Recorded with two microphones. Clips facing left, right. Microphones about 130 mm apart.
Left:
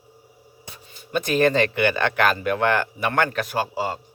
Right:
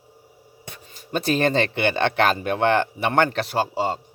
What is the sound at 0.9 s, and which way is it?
Speech, 40° right (ahead or behind).